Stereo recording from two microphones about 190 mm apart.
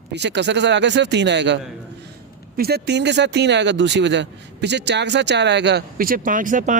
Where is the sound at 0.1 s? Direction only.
65° right (ahead or behind).